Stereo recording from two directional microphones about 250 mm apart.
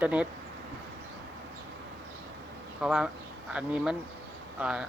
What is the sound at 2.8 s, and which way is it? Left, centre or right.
Speech, centre.